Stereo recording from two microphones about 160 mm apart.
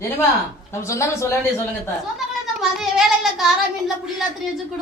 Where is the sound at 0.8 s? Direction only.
20° left (ahead or behind).